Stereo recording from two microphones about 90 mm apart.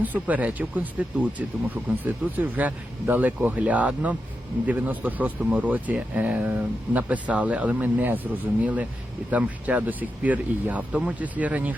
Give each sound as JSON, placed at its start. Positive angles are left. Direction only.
{"t": 0.0, "sound": "speech", "side_deg": -20}